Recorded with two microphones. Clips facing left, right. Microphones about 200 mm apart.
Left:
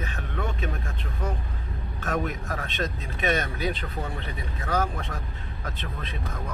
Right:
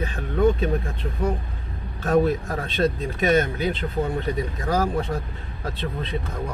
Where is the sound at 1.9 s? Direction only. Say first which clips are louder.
Right 9 dB; 35° right (ahead or behind).